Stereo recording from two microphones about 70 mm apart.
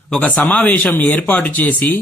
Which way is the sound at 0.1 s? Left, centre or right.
Centre.